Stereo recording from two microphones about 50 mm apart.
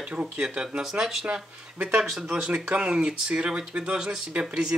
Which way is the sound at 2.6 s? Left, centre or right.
Right.